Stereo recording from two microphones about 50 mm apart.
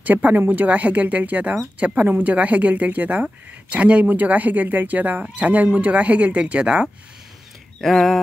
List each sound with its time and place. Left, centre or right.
0.0 s speech: right
7.8 s speech: centre